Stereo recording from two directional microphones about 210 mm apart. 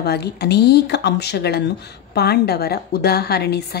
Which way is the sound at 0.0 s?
50° left (ahead or behind).